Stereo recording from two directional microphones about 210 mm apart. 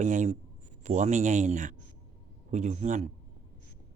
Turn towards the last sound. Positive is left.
turn(degrees=-35)  # may be behind; listen again after turning